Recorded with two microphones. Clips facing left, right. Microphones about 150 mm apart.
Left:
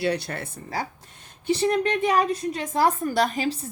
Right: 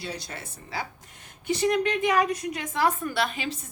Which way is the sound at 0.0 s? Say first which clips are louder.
Left 10 dB; 65° left (ahead or behind).